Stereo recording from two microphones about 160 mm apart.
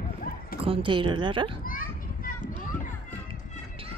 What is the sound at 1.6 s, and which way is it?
Children playing, 60° left (ahead or behind).